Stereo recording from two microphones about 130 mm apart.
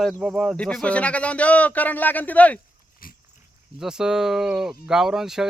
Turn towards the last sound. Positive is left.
turn(degrees=-5)  # may be behind; listen again after turning